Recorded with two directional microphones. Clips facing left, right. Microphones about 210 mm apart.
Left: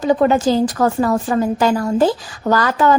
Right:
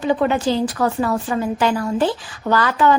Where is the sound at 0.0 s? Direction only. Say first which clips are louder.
Left 4 dB; 40° left (ahead or behind).